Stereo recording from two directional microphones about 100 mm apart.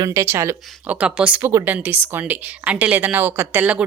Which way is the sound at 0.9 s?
10° right (ahead or behind).